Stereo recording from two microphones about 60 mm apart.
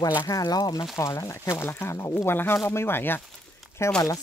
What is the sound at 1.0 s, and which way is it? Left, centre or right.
Speech, left.